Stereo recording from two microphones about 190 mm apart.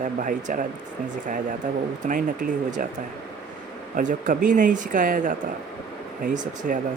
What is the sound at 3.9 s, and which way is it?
Speech, 45° right (ahead or behind).